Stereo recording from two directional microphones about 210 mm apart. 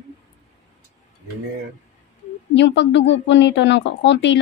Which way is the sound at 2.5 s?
60° left (ahead or behind).